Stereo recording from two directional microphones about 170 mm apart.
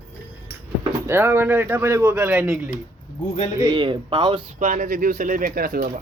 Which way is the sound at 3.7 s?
30° right (ahead or behind).